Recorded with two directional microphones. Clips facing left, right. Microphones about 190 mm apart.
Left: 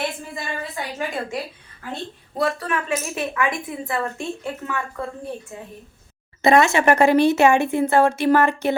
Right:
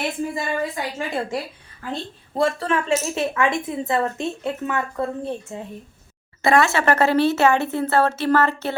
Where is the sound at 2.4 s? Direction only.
30° right (ahead or behind).